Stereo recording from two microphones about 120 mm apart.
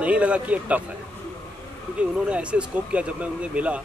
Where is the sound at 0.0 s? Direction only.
10° right (ahead or behind).